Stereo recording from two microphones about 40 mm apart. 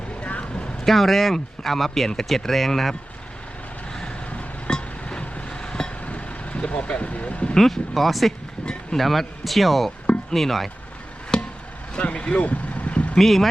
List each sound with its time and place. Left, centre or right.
0.2 s vehicle: left
0.9 s speech: centre
4.0 s a sound: left
4.7 s chink: left
6.1 s vehicle: left
7.5 s speech: centre
8.6 s a sound: centre
9.0 s speech: centre
11.3 s chop: centre
11.9 s speech: left
12.4 s vehicle: left
13.1 s speech: centre